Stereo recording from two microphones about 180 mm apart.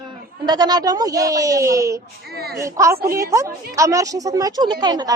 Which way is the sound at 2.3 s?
60° right (ahead or behind).